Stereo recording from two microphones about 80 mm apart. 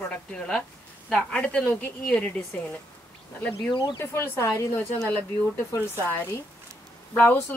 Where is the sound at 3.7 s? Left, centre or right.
Left.